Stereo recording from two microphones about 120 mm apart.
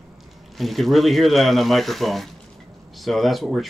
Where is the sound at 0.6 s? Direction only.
Centre (ahead or behind).